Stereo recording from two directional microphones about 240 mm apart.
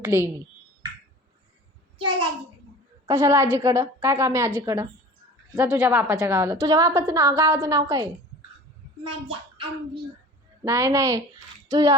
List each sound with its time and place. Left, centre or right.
0.0 s speech: centre
3.1 s a woman's voice: centre
9.0 s a woman's voice: right